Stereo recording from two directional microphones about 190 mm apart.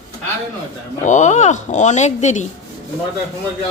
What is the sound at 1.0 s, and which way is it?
Speech, 40° left (ahead or behind).